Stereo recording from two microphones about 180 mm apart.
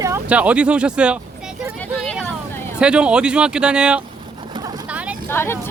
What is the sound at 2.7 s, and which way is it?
Speech, 5° right (ahead or behind).